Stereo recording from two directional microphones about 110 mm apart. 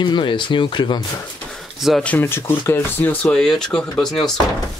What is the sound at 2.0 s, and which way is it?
Speech, 20° left (ahead or behind).